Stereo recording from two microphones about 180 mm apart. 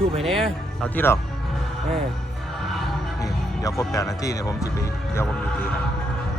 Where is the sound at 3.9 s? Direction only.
20° left (ahead or behind).